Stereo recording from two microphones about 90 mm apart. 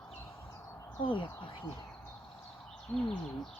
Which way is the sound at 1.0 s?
70° left (ahead or behind).